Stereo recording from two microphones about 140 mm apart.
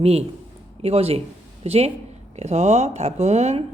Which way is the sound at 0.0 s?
45° right (ahead or behind).